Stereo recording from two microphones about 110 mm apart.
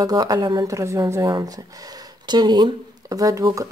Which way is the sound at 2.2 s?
40° right (ahead or behind).